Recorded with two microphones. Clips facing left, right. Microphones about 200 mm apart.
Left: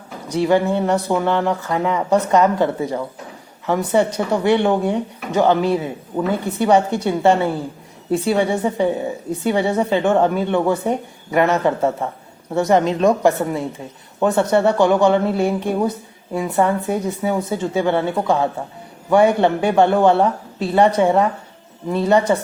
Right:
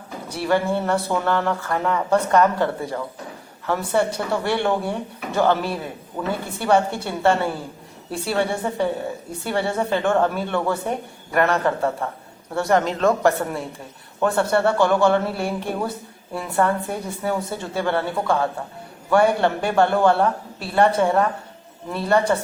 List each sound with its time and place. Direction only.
0.3 s a woman's voice: 20° left (ahead or behind)